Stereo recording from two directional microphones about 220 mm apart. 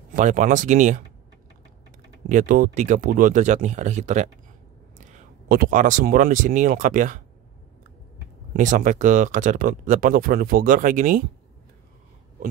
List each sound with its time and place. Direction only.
0.1 s speech: 35° right (ahead or behind)
2.2 s speech: 35° right (ahead or behind)
8.5 s speech: 35° right (ahead or behind)